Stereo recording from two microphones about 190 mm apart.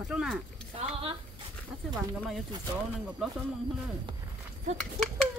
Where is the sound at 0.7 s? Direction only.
30° right (ahead or behind).